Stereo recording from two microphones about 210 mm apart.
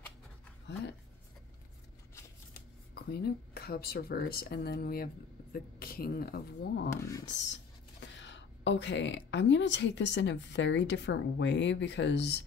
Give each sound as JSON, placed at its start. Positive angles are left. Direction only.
{"t": 2.9, "sound": "speech", "side_deg": 50}
{"t": 6.9, "sound": "speech", "side_deg": 15}
{"t": 8.0, "sound": "speech", "side_deg": 60}